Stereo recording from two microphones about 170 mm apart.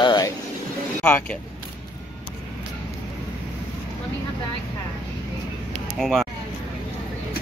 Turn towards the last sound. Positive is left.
turn(degrees=0)  # may be behind; listen again after turning